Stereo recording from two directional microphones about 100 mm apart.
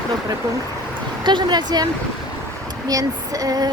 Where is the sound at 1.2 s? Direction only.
45° right (ahead or behind).